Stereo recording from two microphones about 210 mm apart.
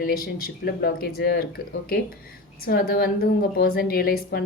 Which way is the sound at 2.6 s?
45° left (ahead or behind).